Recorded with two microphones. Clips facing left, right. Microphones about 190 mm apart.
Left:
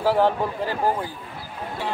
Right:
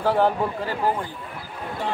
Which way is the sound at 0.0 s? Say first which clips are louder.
Left 1 dB; centre (ahead or behind).